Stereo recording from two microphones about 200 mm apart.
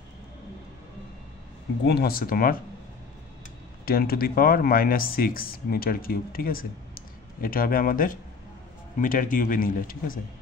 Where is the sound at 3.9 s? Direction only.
50° left (ahead or behind).